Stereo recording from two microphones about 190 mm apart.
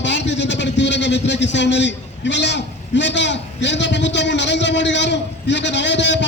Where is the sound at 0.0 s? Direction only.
70° left (ahead or behind).